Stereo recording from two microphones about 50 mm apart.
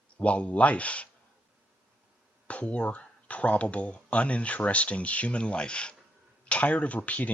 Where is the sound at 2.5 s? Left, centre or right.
Left.